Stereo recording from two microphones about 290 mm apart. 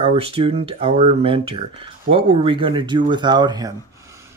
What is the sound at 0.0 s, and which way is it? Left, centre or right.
Speech, centre.